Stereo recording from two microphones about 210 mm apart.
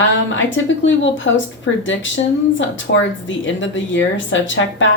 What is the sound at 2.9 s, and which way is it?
Speech, 50° left (ahead or behind).